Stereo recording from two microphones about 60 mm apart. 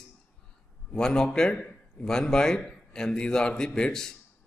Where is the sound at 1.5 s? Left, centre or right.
Left.